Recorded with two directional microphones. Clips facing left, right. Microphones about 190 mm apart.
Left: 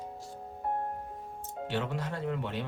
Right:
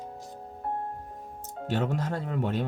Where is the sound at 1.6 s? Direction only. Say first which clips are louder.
Right 5 dB; 45° right (ahead or behind).